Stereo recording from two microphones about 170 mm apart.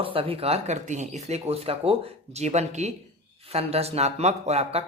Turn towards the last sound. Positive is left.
turn(degrees=-40)  # may be behind; listen again after turning